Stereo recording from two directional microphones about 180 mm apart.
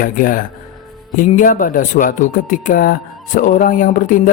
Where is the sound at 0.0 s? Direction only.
50° left (ahead or behind).